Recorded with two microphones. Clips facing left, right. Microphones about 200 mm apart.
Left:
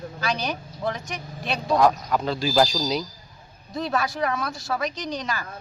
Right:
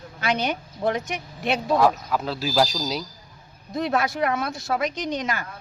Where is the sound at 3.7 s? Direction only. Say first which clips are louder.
Right 2 dB; 20° right (ahead or behind).